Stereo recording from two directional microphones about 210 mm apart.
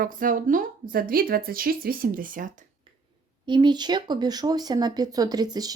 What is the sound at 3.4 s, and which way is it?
Speech, 20° right (ahead or behind).